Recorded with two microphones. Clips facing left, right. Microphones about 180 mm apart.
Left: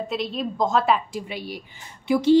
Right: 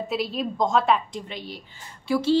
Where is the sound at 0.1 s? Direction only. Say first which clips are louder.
Even; centre (ahead or behind).